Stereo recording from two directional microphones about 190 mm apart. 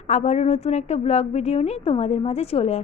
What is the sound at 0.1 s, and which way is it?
A woman's voice, 35° left (ahead or behind).